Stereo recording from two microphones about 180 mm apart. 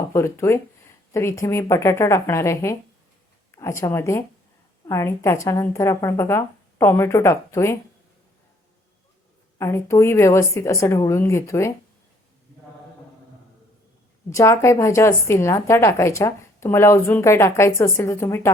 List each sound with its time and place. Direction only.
0.1 s a woman's voice: 15° left (ahead or behind)
9.6 s a woman's voice: 15° left (ahead or behind)
14.3 s a woman's voice: 15° left (ahead or behind)